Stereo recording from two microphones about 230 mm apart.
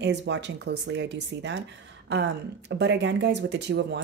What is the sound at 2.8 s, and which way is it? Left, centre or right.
A woman's voice, right.